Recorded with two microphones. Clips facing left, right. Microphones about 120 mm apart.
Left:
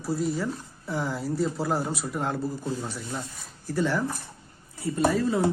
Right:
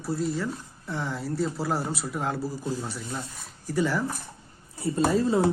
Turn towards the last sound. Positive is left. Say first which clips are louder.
# right 1 dB
turn(degrees=-25)  # may be behind; listen again after turning